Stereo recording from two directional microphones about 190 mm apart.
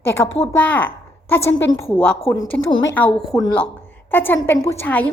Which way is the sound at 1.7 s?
20° left (ahead or behind).